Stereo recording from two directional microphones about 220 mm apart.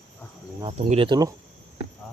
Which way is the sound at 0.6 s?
30° right (ahead or behind).